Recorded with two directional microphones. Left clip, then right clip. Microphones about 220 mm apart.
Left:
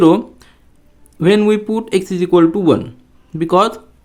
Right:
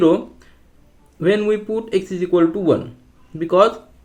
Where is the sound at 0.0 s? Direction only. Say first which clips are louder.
Left 4 dB; 45° left (ahead or behind).